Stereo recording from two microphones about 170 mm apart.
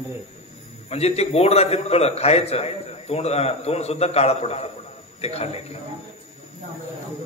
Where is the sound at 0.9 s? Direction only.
40° left (ahead or behind).